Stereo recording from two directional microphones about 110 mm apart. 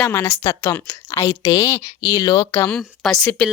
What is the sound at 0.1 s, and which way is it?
A woman's voice, 20° left (ahead or behind).